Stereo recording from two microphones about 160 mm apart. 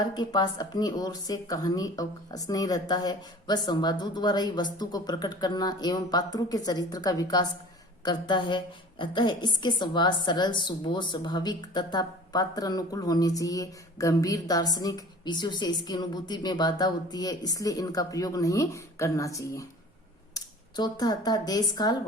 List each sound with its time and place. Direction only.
0.0 s a woman's voice: 25° left (ahead or behind)